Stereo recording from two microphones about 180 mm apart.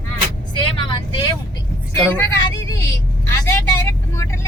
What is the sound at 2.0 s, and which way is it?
Speech, 15° left (ahead or behind).